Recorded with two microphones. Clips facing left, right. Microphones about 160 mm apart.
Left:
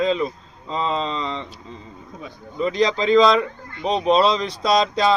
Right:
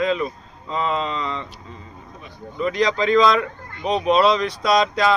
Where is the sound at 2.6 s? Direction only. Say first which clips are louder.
Even; 30° left (ahead or behind).